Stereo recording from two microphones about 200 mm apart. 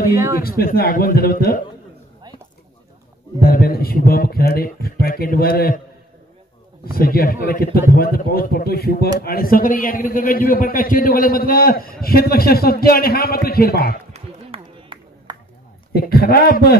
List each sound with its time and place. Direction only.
0.1 s speech: 15° right (ahead or behind)
0.4 s a man's voice: 50° left (ahead or behind)
3.4 s a man's voice: 50° left (ahead or behind)
6.9 s a man's voice: 50° left (ahead or behind)
14.1 s run: 30° right (ahead or behind)
15.9 s a man's voice: 50° left (ahead or behind)